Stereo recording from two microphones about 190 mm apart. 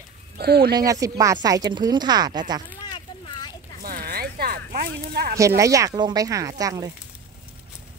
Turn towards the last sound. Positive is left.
turn(degrees=-20)  # may be behind; listen again after turning